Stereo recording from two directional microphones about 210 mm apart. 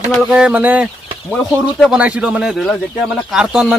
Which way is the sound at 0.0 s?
5° right (ahead or behind).